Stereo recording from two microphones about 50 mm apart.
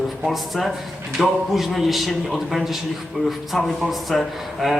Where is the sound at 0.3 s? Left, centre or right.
Centre.